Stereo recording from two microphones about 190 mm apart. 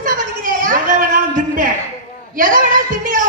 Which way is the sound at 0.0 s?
45° right (ahead or behind).